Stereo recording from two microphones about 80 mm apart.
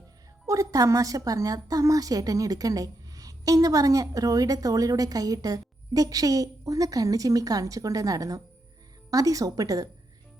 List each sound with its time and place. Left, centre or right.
0.4 s a woman's voice: right